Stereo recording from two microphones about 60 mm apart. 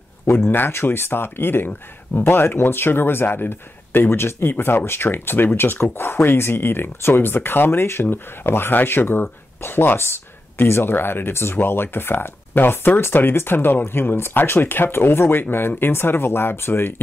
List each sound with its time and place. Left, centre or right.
0.3 s speech: left